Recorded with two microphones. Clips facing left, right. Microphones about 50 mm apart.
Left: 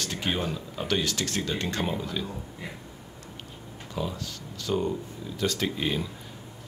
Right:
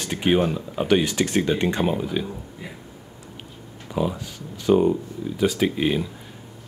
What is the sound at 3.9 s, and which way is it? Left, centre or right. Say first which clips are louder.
Speech: right 7 dB; centre.